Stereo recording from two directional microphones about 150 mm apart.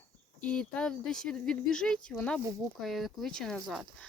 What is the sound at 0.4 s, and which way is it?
Speech, 5° left (ahead or behind).